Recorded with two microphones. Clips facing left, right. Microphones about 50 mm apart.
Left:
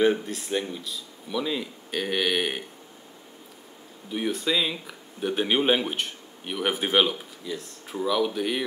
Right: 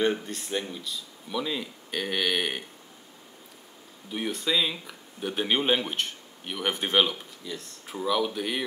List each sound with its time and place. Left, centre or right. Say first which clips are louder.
0.0 s speech: left 4 dB; centre
4.1 s speech: left 2 dB; centre